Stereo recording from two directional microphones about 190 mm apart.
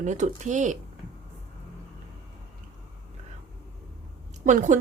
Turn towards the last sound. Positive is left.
turn(degrees=-40)  # may be behind; listen again after turning